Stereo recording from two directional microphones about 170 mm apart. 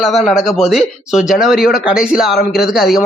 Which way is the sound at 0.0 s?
Centre (ahead or behind).